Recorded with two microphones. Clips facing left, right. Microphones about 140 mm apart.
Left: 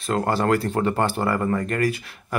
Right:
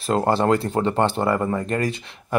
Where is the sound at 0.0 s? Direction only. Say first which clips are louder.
Right 3 dB; 30° right (ahead or behind).